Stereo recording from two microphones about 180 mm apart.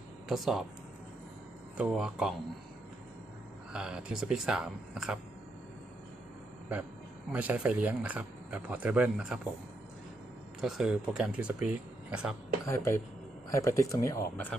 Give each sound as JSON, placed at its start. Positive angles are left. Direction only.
{"t": 0.3, "sound": "speech", "side_deg": 0}
{"t": 1.8, "sound": "speech", "side_deg": -5}
{"t": 3.7, "sound": "speech", "side_deg": -5}
{"t": 7.3, "sound": "speech", "side_deg": -5}
{"t": 10.6, "sound": "speech", "side_deg": -5}
{"t": 12.6, "sound": "speech", "side_deg": 15}